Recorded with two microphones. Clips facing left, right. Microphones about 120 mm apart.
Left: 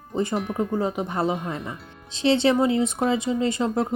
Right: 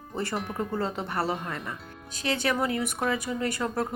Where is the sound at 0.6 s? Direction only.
15° left (ahead or behind).